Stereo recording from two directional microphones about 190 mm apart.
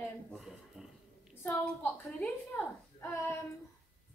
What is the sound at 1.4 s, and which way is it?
A woman's voice, 10° left (ahead or behind).